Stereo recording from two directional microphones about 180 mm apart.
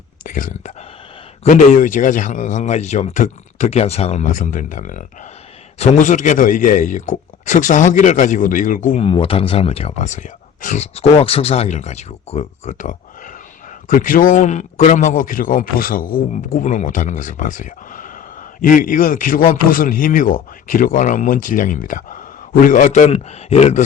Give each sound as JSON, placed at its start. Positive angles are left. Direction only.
{"t": 0.3, "sound": "a man's voice", "side_deg": 45}
{"t": 9.0, "sound": "a man's voice", "side_deg": 30}